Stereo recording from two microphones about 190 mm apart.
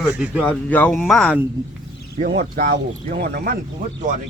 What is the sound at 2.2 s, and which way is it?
Speech, 50° right (ahead or behind).